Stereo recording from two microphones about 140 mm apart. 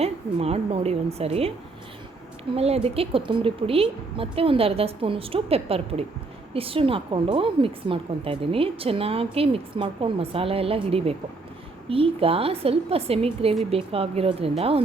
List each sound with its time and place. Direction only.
0.0 s a woman's voice: 45° right (ahead or behind)
2.6 s a woman's voice: 45° right (ahead or behind)